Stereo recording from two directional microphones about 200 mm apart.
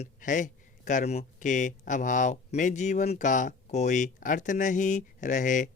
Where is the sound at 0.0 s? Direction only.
40° left (ahead or behind).